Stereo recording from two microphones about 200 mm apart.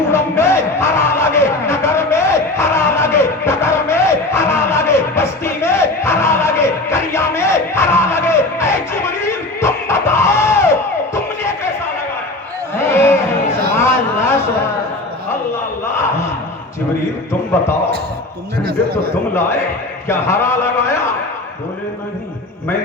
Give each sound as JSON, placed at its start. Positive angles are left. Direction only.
{"t": 0.1, "sound": "music", "side_deg": 15}
{"t": 12.8, "sound": "a sound", "side_deg": 15}
{"t": 18.6, "sound": "speech", "side_deg": -50}
{"t": 20.1, "sound": "a man's voice", "side_deg": 15}